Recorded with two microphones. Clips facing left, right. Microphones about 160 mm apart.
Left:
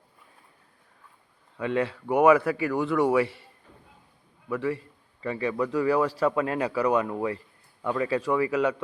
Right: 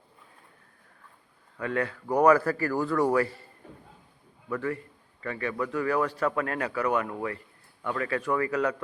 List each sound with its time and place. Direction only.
1.6 s speech: 25° left (ahead or behind)
2.0 s speech: 5° left (ahead or behind)
4.4 s a man's voice: 5° left (ahead or behind)
5.2 s speech: 25° left (ahead or behind)
5.5 s speech: 15° left (ahead or behind)